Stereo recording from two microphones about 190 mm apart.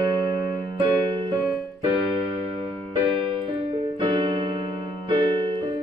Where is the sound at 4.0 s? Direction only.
25° right (ahead or behind).